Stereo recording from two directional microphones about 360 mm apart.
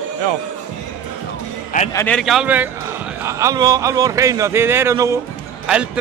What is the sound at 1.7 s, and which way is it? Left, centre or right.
Speech, centre.